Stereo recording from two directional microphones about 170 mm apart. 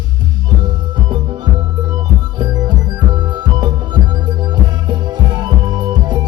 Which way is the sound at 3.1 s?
25° right (ahead or behind).